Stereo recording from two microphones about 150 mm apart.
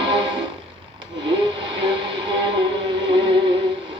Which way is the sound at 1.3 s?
30° right (ahead or behind).